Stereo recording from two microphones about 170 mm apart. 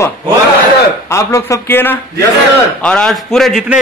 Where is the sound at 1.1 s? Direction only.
15° left (ahead or behind).